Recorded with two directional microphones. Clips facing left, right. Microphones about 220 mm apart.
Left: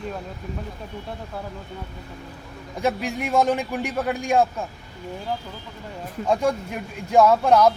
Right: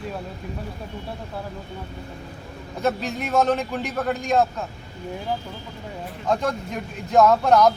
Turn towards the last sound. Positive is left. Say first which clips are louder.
# even
turn(degrees=10)  # may be behind; listen again after turning